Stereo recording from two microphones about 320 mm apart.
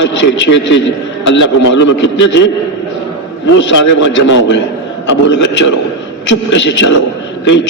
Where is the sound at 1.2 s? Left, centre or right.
Left.